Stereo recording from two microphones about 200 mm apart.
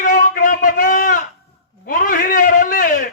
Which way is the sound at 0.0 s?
40° left (ahead or behind).